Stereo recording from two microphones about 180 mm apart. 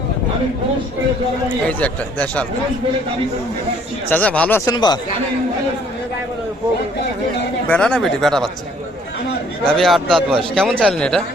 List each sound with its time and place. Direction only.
1.6 s speech: 10° left (ahead or behind)
4.1 s speech: 10° left (ahead or behind)
4.7 s speech: 25° left (ahead or behind)
7.7 s a man's voice: 5° left (ahead or behind)
9.6 s a man's voice: centre (ahead or behind)